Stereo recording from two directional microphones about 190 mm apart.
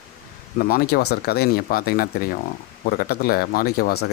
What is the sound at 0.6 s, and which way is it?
Speech, 50° left (ahead or behind).